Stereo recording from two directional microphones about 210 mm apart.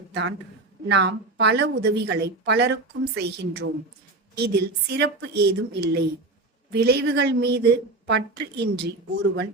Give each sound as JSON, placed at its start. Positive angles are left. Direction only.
{"t": 0.1, "sound": "a woman's voice", "side_deg": -60}